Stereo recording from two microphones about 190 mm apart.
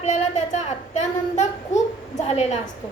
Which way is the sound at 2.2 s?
35° left (ahead or behind).